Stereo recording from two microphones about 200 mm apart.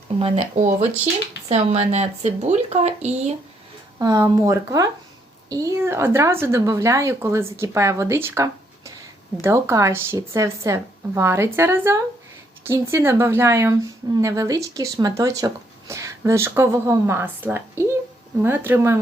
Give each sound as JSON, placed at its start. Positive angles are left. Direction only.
{"t": 0.2, "sound": "speech", "side_deg": -30}
{"t": 3.9, "sound": "a woman's voice", "side_deg": -15}